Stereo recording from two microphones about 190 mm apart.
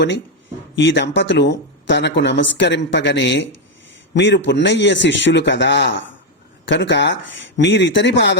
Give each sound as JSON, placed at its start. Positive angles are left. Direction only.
{"t": 0.8, "sound": "speech", "side_deg": 70}